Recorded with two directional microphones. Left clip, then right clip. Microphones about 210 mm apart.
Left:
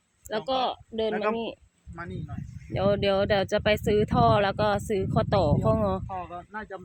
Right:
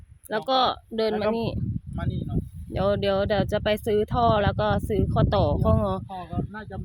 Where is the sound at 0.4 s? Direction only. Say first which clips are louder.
Right 6 dB; 20° right (ahead or behind).